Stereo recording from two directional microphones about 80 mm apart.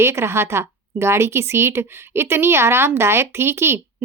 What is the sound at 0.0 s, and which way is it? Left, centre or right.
A woman's voice, right.